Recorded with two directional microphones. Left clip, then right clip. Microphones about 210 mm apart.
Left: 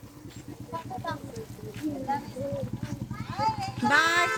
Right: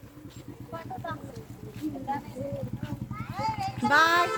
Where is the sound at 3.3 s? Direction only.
15° right (ahead or behind).